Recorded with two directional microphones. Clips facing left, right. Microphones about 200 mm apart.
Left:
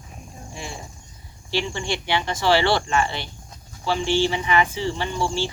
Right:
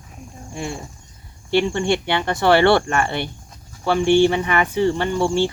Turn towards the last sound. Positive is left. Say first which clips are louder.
# right 6 dB
turn(degrees=-55)  # may be behind; listen again after turning